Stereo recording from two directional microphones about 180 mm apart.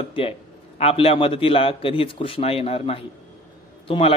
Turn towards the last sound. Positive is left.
turn(degrees=30)  # may be behind; listen again after turning